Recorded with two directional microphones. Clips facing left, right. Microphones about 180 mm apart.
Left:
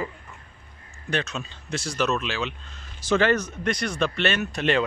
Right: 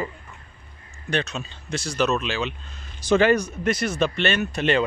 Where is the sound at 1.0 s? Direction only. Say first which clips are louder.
Right 2 dB; centre (ahead or behind).